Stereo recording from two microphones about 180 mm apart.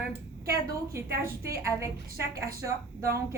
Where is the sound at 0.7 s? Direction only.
15° right (ahead or behind).